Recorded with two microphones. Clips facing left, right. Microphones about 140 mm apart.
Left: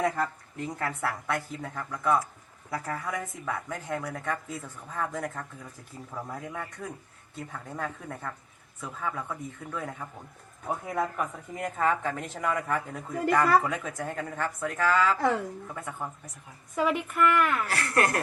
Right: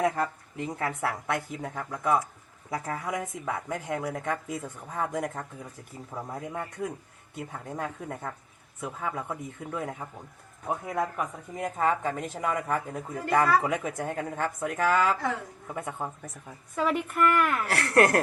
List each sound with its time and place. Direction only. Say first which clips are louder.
0.0 s speech: right 1 dB; 15° right (ahead or behind)
10.7 s a woman's voice: even; centre (ahead or behind)
13.3 s speech: right 1 dB; 20° right (ahead or behind)
16.8 s a woman's voice: even; centre (ahead or behind)
17.7 s speech: right 5 dB; 75° right (ahead or behind)